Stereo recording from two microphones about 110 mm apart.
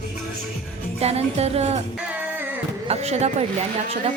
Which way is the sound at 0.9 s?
70° right (ahead or behind).